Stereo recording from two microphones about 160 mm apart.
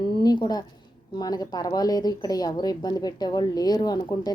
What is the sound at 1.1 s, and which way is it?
Speech, 25° left (ahead or behind).